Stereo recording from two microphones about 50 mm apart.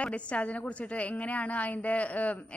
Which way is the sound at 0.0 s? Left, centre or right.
Left.